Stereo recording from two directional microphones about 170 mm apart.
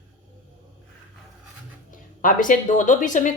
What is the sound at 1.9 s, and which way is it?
Speech, 50° left (ahead or behind).